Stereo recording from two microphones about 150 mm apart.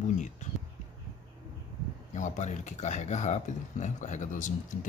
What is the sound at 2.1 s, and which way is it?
Speech, 55° left (ahead or behind).